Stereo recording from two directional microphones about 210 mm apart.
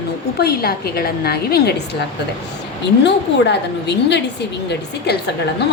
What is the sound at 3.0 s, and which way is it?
A woman's voice, 55° left (ahead or behind).